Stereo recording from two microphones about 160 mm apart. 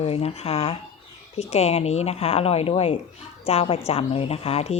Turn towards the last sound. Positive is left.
turn(degrees=40)  # may be behind; listen again after turning